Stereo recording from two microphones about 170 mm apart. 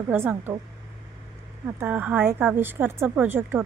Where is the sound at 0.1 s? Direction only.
10° right (ahead or behind).